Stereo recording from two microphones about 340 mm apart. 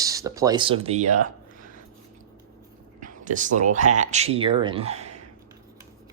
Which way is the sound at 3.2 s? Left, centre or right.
Right.